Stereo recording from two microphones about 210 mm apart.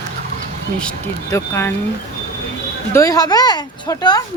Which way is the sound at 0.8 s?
5° left (ahead or behind).